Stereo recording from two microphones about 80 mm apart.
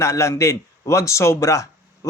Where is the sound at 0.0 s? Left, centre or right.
Left.